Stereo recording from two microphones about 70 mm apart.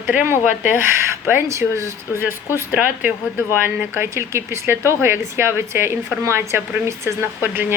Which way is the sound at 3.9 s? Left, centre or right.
Right.